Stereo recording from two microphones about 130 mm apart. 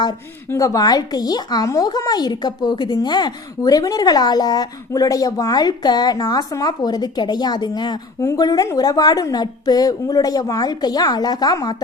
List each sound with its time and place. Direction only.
0.0 s a woman's voice: 30° left (ahead or behind)